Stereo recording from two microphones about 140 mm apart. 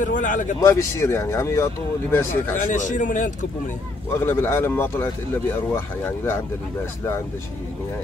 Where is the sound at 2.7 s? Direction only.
65° left (ahead or behind).